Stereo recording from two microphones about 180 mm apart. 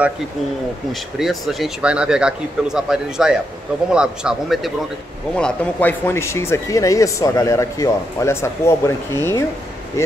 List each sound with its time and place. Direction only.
1.1 s speech: centre (ahead or behind); by 9.4 s 15° left (ahead or behind)